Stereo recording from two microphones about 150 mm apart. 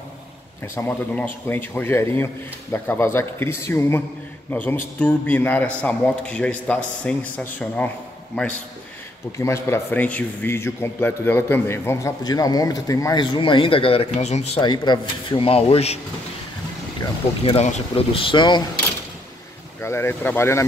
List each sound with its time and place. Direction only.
0.7 s a man's voice: 10° left (ahead or behind)
9.4 s a man's voice: 15° left (ahead or behind); by 14.6 s 45° left (ahead or behind)
14.6 s speech: 30° left (ahead or behind)
17.6 s speech: 45° left (ahead or behind); by 18.6 s 30° left (ahead or behind)
19.8 s a man's voice: 15° left (ahead or behind)